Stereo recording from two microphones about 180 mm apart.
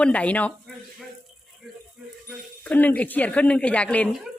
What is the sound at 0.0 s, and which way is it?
Speech, 5° left (ahead or behind).